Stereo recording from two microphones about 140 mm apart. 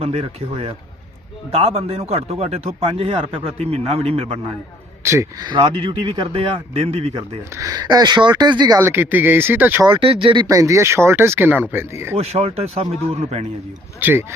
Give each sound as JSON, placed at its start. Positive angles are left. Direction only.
{"t": 0.0, "sound": "speech", "side_deg": -50}
{"t": 5.0, "sound": "speech", "side_deg": -20}
{"t": 5.5, "sound": "speech", "side_deg": -35}
{"t": 7.5, "sound": "speech", "side_deg": -25}
{"t": 8.8, "sound": "speech", "side_deg": -15}
{"t": 9.8, "sound": "speech", "side_deg": -40}
{"t": 12.1, "sound": "speech", "side_deg": -45}
{"t": 14.0, "sound": "speech", "side_deg": -15}